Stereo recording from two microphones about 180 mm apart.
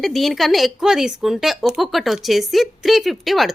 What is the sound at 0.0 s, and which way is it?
A woman's voice, centre (ahead or behind).